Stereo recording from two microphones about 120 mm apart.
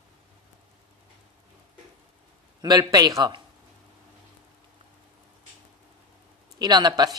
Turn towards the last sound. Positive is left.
turn(degrees=-35)  # may be behind; listen again after turning